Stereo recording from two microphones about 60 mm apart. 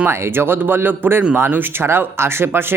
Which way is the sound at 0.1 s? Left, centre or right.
Right.